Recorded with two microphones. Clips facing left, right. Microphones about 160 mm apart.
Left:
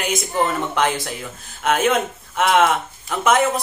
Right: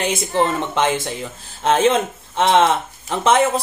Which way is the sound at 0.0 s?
30° right (ahead or behind).